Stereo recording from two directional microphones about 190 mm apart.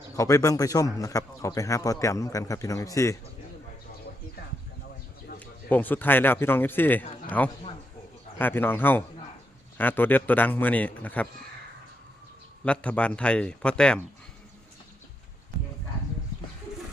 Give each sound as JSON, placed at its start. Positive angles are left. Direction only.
{"t": 0.2, "sound": "a man's voice", "side_deg": 15}
{"t": 5.4, "sound": "a man's voice", "side_deg": 10}
{"t": 12.6, "sound": "a man's voice", "side_deg": 5}